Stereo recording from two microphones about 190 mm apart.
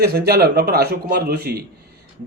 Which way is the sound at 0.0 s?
55° right (ahead or behind).